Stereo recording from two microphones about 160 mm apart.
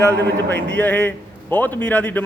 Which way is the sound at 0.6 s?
90° right.